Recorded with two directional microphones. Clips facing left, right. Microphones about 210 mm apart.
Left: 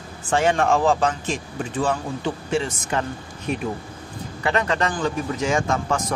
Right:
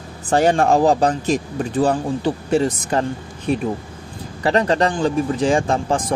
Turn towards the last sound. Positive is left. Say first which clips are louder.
# right 3 dB
turn(degrees=-30)  # may be behind; listen again after turning